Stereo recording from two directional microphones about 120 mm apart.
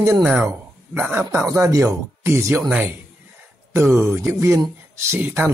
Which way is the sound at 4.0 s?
20° right (ahead or behind).